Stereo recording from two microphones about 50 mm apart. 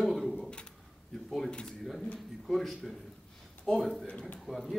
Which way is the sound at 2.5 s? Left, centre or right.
Centre.